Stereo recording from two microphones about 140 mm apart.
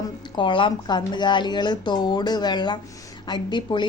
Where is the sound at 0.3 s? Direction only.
35° left (ahead or behind).